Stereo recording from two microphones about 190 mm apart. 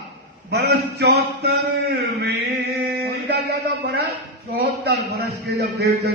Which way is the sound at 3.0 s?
65° right (ahead or behind).